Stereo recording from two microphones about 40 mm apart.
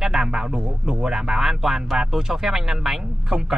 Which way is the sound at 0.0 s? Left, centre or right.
Centre.